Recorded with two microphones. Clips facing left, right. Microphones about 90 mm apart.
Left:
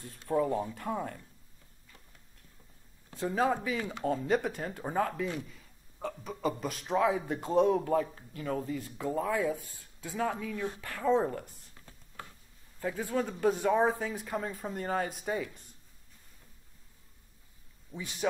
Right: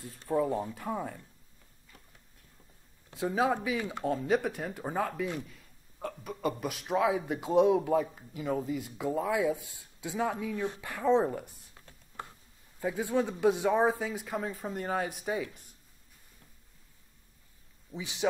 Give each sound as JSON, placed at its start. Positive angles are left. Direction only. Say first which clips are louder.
{"t": 0.0, "sound": "speech", "louder": "even", "side_deg": -5}
{"t": 3.2, "sound": "speech", "louder": "right 1 dB", "side_deg": -5}
{"t": 10.6, "sound": "speech", "louder": "right 2 dB", "side_deg": -20}
{"t": 10.9, "sound": "speech", "louder": "right 2 dB", "side_deg": -5}
{"t": 12.8, "sound": "speech", "louder": "right 2 dB", "side_deg": -5}
{"t": 17.9, "sound": "a man's voice", "louder": "right 1 dB", "side_deg": -15}